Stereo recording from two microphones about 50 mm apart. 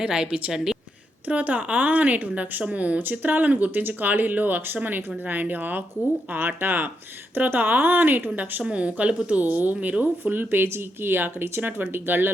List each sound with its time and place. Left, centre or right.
0.0 s a woman's voice: centre
1.3 s a woman's voice: right
3.0 s speech: right
8.6 s a woman's voice: right
9.4 s speech: right